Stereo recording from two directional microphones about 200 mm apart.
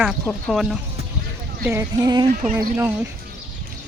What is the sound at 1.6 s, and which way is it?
Speech, 15° right (ahead or behind).